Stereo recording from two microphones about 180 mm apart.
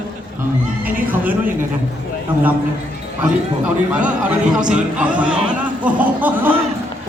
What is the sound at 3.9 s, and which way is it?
A man's voice, 5° right (ahead or behind).